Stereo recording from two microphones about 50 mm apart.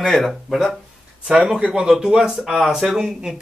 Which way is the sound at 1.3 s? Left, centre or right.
Centre.